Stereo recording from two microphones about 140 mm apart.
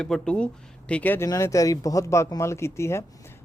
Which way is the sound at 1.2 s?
25° left (ahead or behind).